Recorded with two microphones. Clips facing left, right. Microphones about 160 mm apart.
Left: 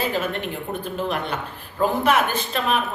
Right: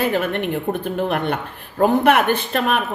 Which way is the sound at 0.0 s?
60° right (ahead or behind).